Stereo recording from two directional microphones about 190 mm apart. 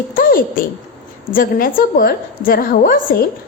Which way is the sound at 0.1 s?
50° left (ahead or behind).